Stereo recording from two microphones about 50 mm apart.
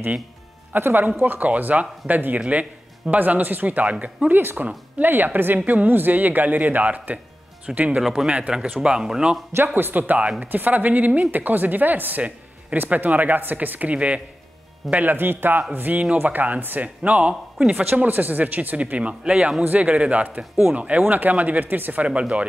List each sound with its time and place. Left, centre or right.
0.9 s speech: right
3.8 s a man's voice: right
4.3 s a man's voice: right
8.0 s speech: centre
8.3 s a man's voice: right
9.8 s speech: right
15.1 s speech: right
17.6 s a man's voice: centre
18.0 s speech: right
19.6 s a man's voice: right